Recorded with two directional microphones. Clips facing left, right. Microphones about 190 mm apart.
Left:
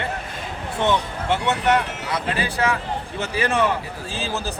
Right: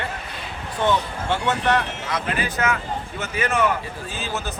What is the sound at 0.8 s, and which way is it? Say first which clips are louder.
A man's voice: even; 25° left (ahead or behind).